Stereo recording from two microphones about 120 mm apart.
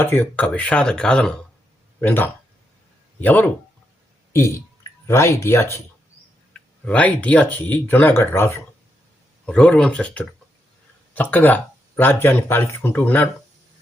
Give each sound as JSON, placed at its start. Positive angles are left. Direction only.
{"t": 0.0, "sound": "speech", "side_deg": 15}
{"t": 6.5, "sound": "speech", "side_deg": 10}
{"t": 9.5, "sound": "speech", "side_deg": 10}